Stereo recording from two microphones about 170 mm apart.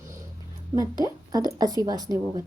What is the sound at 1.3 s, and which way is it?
A woman's voice, 20° right (ahead or behind).